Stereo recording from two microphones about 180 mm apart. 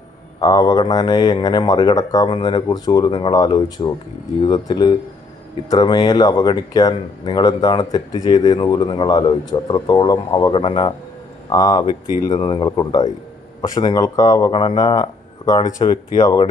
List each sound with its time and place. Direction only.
0.4 s speech: 20° left (ahead or behind)